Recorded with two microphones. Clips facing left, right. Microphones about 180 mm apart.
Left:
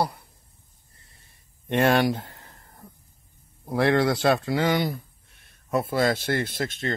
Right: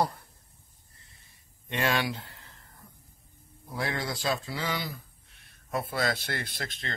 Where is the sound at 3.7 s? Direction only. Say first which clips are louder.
Left 12 dB; 65° left (ahead or behind).